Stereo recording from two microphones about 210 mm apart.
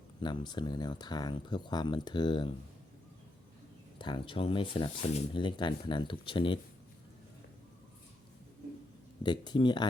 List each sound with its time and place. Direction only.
0.2 s speech: 20° left (ahead or behind)
3.9 s speech: 20° left (ahead or behind)
9.2 s speech: 20° left (ahead or behind)